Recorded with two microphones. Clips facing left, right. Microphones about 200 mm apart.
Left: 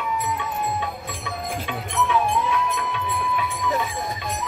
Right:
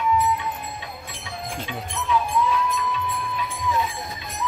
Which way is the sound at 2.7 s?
65° left (ahead or behind).